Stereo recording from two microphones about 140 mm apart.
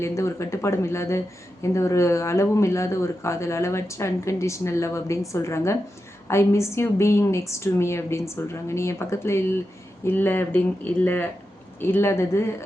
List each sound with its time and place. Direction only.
0.0 s speech: 20° left (ahead or behind)